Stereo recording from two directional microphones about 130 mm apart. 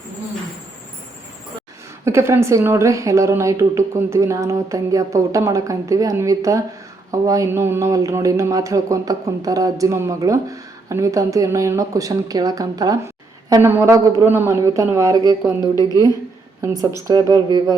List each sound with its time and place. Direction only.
2.0 s speech: 20° right (ahead or behind)
13.5 s speech: 20° right (ahead or behind)
15.7 s a woman's voice: 30° left (ahead or behind)
16.6 s speech: 25° right (ahead or behind)